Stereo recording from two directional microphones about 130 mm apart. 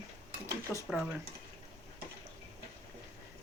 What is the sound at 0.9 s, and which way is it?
Speech, 5° right (ahead or behind).